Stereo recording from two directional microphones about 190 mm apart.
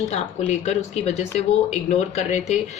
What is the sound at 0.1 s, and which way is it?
Speech, 35° left (ahead or behind).